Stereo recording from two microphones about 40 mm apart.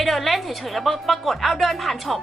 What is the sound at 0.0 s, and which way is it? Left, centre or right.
Speech, centre.